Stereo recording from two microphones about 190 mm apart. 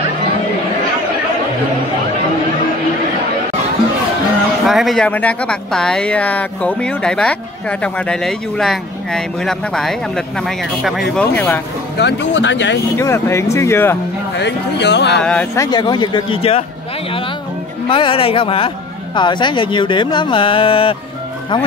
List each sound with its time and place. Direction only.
4.6 s speech: centre (ahead or behind)
12.0 s speech: 65° left (ahead or behind)
12.9 s speech: 15° left (ahead or behind)
14.3 s speech: 65° left (ahead or behind)
15.1 s speech: 5° left (ahead or behind); by 16.6 s 30° left (ahead or behind)
17.8 s speech: 25° left (ahead or behind)